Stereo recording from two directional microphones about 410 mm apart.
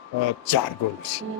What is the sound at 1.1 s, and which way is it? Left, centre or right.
Speech, left.